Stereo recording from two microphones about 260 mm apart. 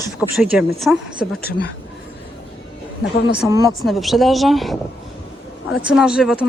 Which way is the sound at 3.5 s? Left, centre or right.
Centre.